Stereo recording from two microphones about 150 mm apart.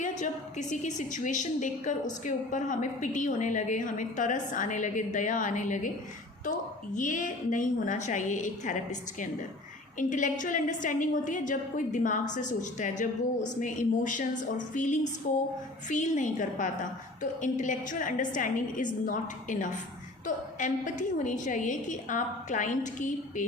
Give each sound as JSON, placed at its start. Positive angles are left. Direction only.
{"t": 0.2, "sound": "a woman's voice", "side_deg": 55}
{"t": 6.9, "sound": "a woman's voice", "side_deg": 60}